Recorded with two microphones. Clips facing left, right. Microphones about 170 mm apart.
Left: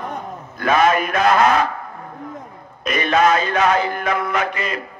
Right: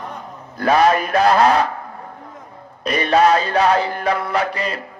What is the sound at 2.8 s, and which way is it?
A man's voice, 35° right (ahead or behind).